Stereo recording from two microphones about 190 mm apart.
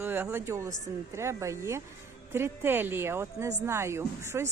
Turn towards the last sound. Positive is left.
turn(degrees=-15)  # may be behind; listen again after turning